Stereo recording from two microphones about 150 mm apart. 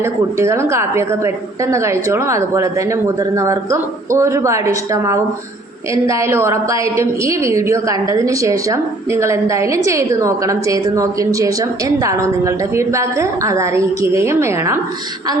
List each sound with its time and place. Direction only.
0.0 s a woman's voice: 20° right (ahead or behind)